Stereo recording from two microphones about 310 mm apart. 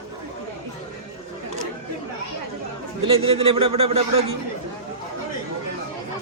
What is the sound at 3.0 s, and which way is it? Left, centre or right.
A man's voice, centre.